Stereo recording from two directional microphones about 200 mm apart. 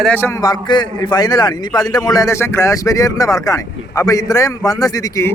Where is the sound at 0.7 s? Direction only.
20° left (ahead or behind).